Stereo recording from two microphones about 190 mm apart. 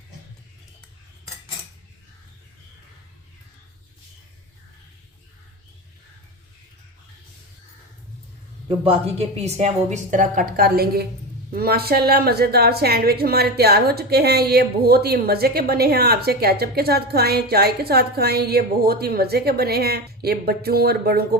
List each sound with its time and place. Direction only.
8.7 s a woman's voice: 30° right (ahead or behind); by 21.2 s 55° right (ahead or behind)